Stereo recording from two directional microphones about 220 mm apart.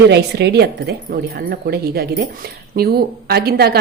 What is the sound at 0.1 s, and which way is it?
Speech, 50° right (ahead or behind).